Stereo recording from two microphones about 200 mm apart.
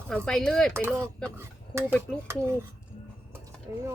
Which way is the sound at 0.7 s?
10° right (ahead or behind).